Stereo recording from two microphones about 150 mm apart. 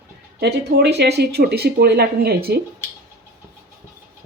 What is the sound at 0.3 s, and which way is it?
Speech, 90° right.